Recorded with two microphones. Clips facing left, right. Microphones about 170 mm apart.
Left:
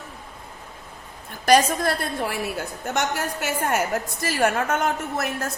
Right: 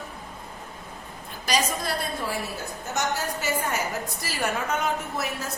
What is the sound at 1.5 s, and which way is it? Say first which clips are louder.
A woman's voice: left 8 dB; 55° left (ahead or behind).